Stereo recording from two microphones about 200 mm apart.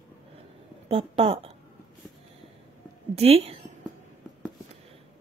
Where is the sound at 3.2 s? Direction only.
30° right (ahead or behind).